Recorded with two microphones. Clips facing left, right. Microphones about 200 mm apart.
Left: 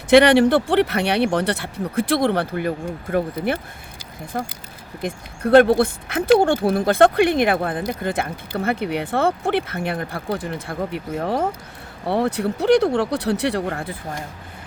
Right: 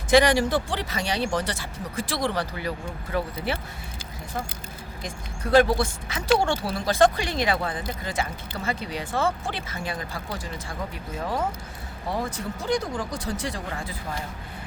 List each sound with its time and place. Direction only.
0.1 s speech: 65° left (ahead or behind)